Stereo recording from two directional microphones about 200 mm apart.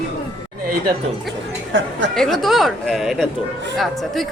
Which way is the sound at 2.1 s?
Centre (ahead or behind).